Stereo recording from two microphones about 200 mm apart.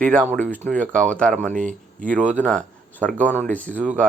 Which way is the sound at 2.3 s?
5° left (ahead or behind).